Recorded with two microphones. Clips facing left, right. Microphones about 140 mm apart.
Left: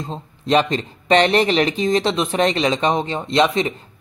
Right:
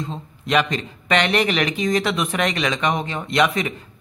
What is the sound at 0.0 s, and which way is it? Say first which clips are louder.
Speech: left 1 dB; 30° left (ahead or behind).